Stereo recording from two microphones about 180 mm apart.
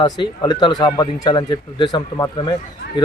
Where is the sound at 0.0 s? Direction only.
25° left (ahead or behind).